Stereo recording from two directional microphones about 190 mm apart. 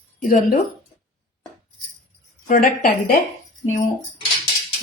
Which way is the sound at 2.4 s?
45° left (ahead or behind).